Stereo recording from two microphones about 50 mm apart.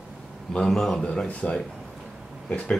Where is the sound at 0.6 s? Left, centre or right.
Centre.